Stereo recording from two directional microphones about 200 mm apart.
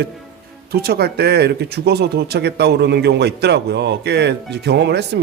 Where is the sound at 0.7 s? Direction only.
50° right (ahead or behind).